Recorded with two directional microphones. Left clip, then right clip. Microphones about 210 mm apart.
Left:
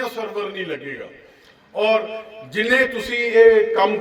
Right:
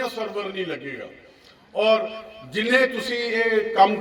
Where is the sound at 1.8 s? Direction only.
45° right (ahead or behind).